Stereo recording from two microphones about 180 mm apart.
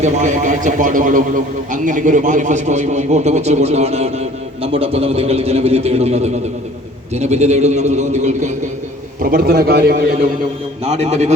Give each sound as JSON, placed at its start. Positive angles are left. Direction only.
{"t": 0.0, "sound": "a man's voice", "side_deg": -40}
{"t": 9.2, "sound": "a man's voice", "side_deg": -55}
{"t": 10.8, "sound": "a man's voice", "side_deg": -35}